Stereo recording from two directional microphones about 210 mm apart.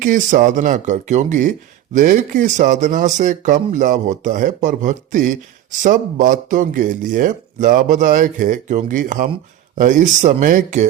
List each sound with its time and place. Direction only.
0.0 s speech: 40° right (ahead or behind)